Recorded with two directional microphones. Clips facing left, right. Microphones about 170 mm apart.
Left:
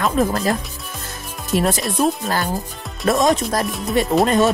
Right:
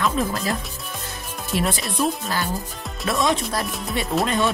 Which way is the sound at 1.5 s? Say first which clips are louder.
Left 5 dB; 45° left (ahead or behind).